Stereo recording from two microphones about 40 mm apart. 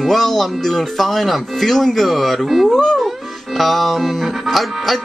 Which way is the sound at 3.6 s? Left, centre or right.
Centre.